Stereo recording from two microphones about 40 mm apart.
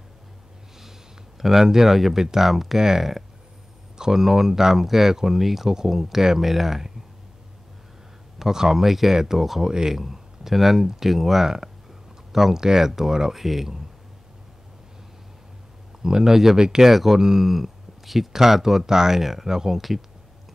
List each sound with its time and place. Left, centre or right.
1.4 s speech: centre
8.4 s speech: centre
16.0 s speech: centre
16.9 s speech: centre